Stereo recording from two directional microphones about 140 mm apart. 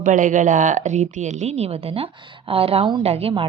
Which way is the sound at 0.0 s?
65° right (ahead or behind).